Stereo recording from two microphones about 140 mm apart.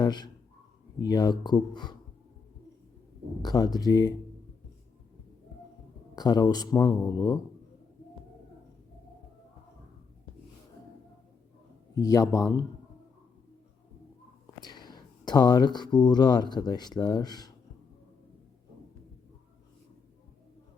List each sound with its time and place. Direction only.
0.0 s a man's voice: 30° left (ahead or behind)
3.4 s a man's voice: 30° left (ahead or behind)
6.1 s a man's voice: 30° left (ahead or behind)
11.9 s a man's voice: 25° left (ahead or behind)
14.6 s speech: 30° left (ahead or behind)